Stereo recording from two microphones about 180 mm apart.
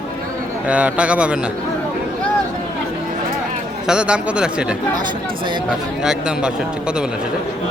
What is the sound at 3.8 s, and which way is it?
Speech, 5° right (ahead or behind).